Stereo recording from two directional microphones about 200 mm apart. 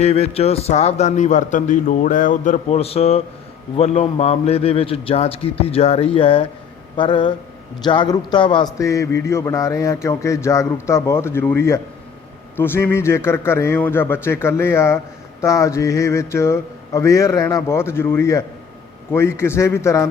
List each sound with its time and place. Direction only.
0.0 s a man's voice: 30° left (ahead or behind); by 20.1 s 15° left (ahead or behind)